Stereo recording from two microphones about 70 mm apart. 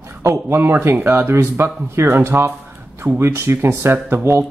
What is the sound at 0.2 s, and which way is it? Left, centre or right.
Speech, right.